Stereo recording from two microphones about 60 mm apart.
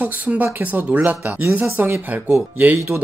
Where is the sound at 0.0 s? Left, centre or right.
Right.